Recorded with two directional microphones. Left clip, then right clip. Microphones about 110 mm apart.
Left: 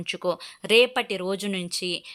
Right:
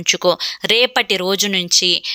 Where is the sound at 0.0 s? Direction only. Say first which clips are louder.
Right 12 dB; 35° right (ahead or behind).